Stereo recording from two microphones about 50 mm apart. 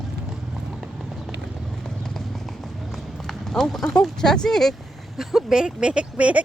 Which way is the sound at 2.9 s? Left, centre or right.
Centre.